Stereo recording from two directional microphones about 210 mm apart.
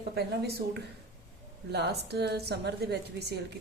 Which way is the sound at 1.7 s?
50° right (ahead or behind).